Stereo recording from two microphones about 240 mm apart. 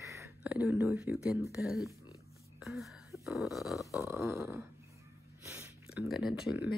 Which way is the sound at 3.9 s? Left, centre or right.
Centre.